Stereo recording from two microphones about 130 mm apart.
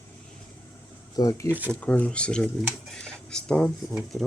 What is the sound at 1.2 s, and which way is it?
Speech, 25° left (ahead or behind).